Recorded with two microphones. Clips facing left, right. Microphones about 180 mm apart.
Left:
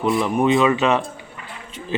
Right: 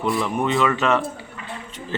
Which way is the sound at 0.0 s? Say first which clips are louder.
Left 4 dB; 20° left (ahead or behind).